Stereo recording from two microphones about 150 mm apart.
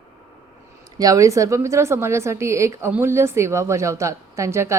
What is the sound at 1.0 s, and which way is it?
A woman's voice, 20° right (ahead or behind).